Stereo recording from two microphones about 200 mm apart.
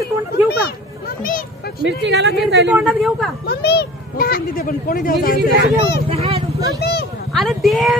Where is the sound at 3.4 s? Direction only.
55° left (ahead or behind).